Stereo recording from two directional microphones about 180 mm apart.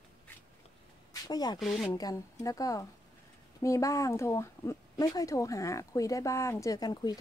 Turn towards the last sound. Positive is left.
turn(degrees=20)  # may be behind; listen again after turning